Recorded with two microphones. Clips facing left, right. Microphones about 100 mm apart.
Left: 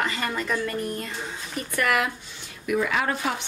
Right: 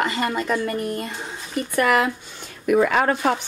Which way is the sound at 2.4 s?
50° right (ahead or behind).